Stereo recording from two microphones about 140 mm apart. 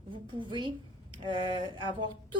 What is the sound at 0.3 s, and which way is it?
Speech, 35° right (ahead or behind).